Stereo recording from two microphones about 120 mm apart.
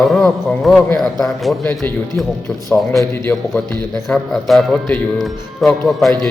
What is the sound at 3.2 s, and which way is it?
Speech, 15° left (ahead or behind).